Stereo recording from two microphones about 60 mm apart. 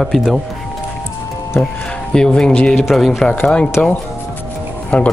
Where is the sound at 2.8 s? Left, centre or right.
Centre.